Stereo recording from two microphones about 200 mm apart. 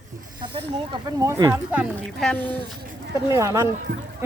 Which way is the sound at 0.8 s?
20° right (ahead or behind).